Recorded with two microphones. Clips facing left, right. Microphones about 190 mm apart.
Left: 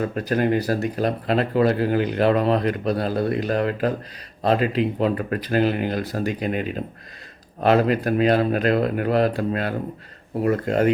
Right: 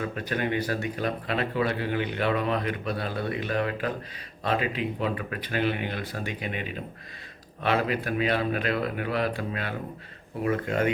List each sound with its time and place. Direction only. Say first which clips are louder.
0.0 s speech: left 7 dB; 40° left (ahead or behind)